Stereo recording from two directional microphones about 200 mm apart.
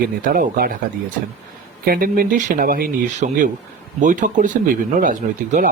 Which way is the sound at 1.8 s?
45° right (ahead or behind).